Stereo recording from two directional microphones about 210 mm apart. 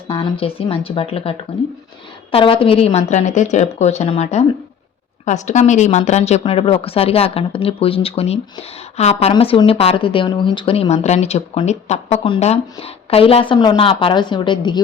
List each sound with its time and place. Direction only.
0.1 s a woman's voice: 25° left (ahead or behind)